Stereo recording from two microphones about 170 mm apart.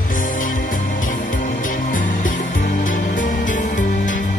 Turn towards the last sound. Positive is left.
turn(degrees=50)  # may be behind; listen again after turning